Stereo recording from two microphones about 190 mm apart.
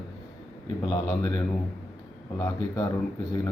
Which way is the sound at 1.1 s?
15° left (ahead or behind).